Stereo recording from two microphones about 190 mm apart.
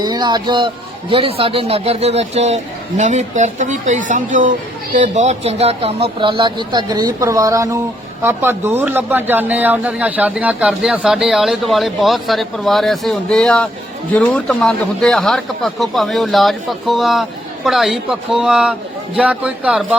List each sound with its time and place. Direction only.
0.0 s speech: 20° right (ahead or behind); by 20.0 s 5° right (ahead or behind)